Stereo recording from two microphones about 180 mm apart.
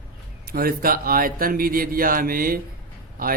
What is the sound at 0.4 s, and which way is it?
A man's voice, 55° right (ahead or behind).